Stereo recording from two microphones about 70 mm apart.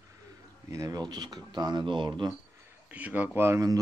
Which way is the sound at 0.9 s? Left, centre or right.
Right.